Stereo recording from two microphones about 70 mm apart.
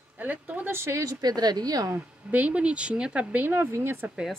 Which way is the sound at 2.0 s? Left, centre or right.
Right.